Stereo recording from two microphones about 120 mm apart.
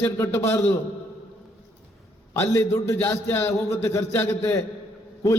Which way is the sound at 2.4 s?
20° left (ahead or behind).